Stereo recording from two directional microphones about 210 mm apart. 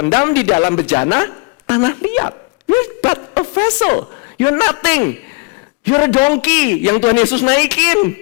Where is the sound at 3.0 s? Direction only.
15° left (ahead or behind).